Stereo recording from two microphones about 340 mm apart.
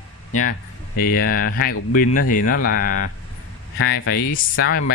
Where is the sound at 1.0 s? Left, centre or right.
Left.